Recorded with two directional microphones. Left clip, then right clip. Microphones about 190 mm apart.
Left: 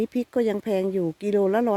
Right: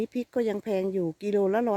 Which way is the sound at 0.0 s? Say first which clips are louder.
Left 4 dB; 5° left (ahead or behind).